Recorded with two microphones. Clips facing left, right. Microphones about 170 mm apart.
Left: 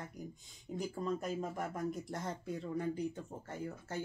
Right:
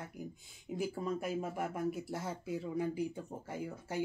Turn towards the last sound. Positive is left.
turn(degrees=-10)  # may be behind; listen again after turning